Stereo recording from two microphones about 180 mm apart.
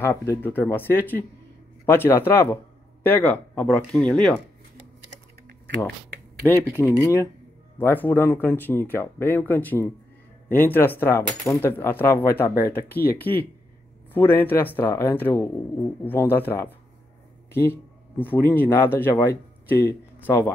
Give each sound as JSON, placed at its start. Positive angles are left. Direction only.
{"t": 0.0, "sound": "speech", "side_deg": 15}
{"t": 6.4, "sound": "speech", "side_deg": 10}